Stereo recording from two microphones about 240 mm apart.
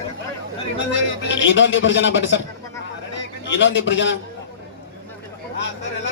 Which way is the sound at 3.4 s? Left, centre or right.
Left.